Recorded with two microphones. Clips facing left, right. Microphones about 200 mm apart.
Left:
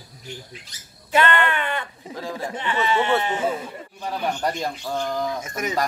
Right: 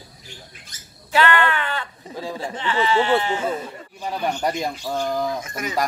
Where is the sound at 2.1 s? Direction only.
15° right (ahead or behind).